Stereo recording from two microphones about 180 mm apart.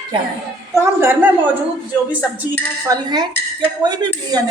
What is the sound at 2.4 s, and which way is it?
A woman's voice, 15° right (ahead or behind).